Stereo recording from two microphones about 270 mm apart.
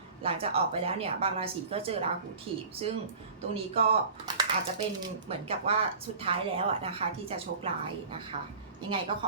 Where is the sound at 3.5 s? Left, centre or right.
Right.